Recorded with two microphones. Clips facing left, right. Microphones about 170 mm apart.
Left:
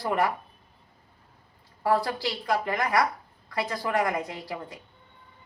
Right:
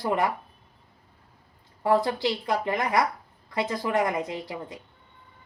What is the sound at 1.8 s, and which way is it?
A woman's voice, 20° right (ahead or behind).